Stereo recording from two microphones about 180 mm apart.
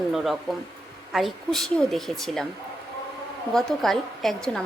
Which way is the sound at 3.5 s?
Centre (ahead or behind).